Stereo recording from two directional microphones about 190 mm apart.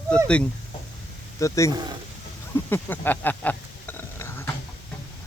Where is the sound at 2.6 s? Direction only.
10° left (ahead or behind).